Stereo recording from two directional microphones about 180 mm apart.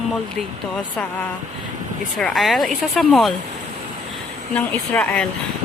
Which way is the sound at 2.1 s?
Centre (ahead or behind).